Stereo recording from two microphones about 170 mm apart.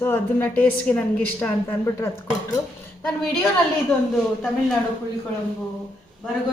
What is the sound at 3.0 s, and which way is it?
Speech, 5° left (ahead or behind).